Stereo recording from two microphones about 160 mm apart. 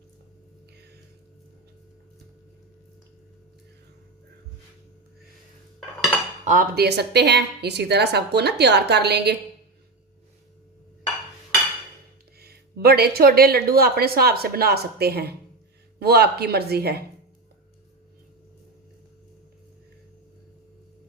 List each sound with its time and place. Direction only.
6.4 s cutlery: 55° right (ahead or behind)
6.7 s a woman's voice: 90° right
12.4 s speech: 80° right